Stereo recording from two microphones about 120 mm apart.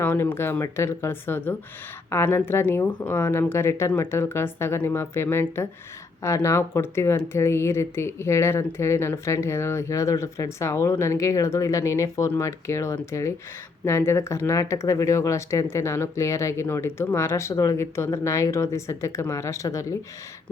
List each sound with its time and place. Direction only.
0.0 s speech: 20° left (ahead or behind)